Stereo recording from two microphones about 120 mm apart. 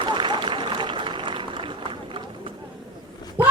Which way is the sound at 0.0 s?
40° right (ahead or behind).